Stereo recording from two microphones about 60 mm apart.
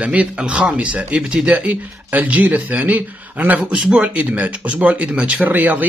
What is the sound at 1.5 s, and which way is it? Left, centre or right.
Speech, right.